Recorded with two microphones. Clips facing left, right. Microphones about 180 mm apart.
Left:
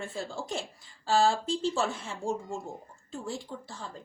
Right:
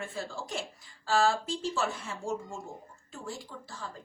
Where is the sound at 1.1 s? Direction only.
30° left (ahead or behind).